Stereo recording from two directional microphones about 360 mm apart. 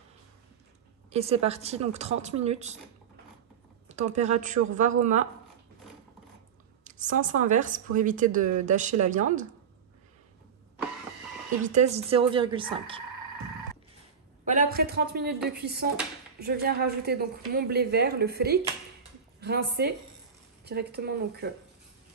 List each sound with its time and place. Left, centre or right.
1.1 s a woman's voice: centre
3.9 s speech: centre
6.8 s speech: right
11.6 s a woman's voice: centre
14.4 s speech: right